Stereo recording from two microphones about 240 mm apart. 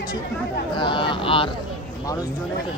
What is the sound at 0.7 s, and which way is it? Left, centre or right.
Speech, left.